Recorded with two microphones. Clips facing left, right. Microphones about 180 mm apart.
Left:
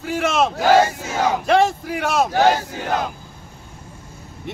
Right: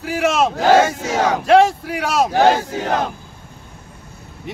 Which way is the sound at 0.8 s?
90° right.